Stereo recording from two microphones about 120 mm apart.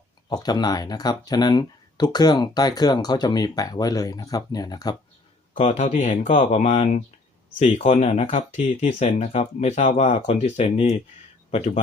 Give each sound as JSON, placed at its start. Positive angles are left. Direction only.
{"t": 0.3, "sound": "speech", "side_deg": 35}
{"t": 5.5, "sound": "speech", "side_deg": 65}